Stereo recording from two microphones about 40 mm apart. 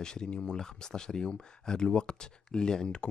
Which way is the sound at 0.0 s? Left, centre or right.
Centre.